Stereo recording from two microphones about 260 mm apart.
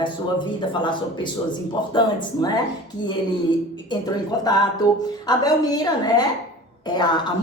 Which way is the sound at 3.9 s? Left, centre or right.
Centre.